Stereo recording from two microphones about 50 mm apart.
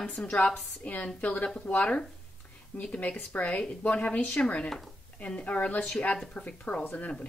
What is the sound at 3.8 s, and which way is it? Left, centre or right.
A woman's voice, left.